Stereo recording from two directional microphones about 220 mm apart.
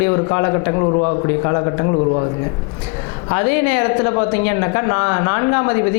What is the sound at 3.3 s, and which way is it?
Speech, 20° left (ahead or behind).